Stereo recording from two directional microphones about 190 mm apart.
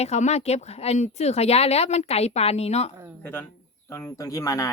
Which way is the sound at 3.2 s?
10° left (ahead or behind).